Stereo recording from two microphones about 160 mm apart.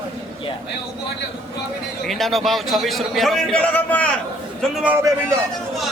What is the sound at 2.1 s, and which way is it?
A man's voice, centre (ahead or behind).